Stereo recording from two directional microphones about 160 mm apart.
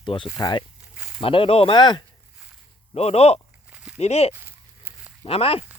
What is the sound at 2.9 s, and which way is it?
Speech, 40° left (ahead or behind).